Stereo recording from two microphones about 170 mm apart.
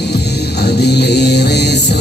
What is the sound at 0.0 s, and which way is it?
Music, 75° left (ahead or behind).